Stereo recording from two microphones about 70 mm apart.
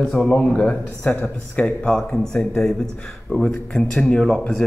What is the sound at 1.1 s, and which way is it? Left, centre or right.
Speech, left.